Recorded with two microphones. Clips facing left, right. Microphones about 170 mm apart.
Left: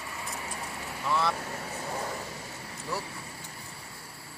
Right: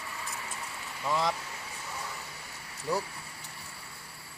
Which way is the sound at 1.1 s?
15° right (ahead or behind).